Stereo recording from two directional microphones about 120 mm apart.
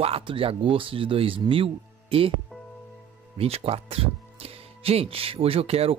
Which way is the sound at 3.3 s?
55° right (ahead or behind).